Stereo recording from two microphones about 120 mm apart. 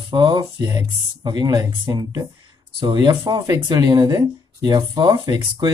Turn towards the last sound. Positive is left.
turn(degrees=-35)  # may be behind; listen again after turning